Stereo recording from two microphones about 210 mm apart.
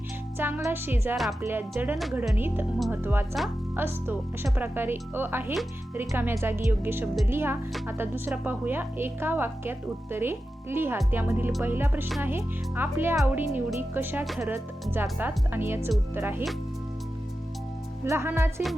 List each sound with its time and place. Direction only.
0.3 s a woman's voice: 10° right (ahead or behind)
1.5 s a woman's voice: 10° right (ahead or behind)
18.0 s a woman's voice: 15° right (ahead or behind)